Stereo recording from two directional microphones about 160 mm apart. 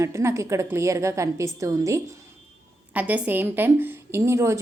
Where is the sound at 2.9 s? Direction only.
10° right (ahead or behind).